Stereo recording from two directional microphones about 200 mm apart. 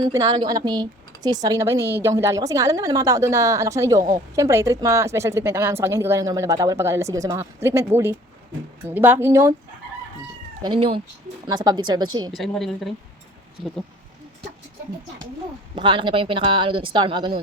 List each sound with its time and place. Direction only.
0.2 s a woman's voice: 20° right (ahead or behind)
10.6 s speech: 25° right (ahead or behind)
12.3 s a woman's voice: centre (ahead or behind)
15.7 s speech: 25° right (ahead or behind)